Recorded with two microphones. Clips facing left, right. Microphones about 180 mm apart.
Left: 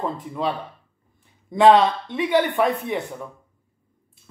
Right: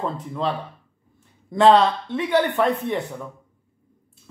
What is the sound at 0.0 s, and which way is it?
Speech, 5° left (ahead or behind).